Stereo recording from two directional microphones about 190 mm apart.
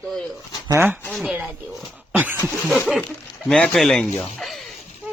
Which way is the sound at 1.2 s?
10° right (ahead or behind).